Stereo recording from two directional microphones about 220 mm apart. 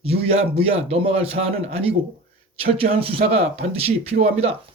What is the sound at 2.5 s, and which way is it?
Speech, 25° right (ahead or behind).